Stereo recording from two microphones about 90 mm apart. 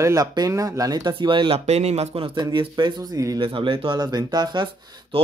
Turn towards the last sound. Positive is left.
turn(degrees=-60)  # may be behind; listen again after turning